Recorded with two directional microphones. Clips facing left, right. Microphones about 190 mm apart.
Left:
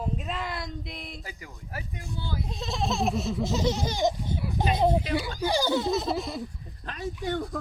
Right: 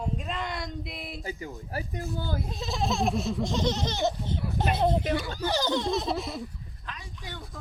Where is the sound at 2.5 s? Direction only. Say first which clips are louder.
Left 1 dB; centre (ahead or behind).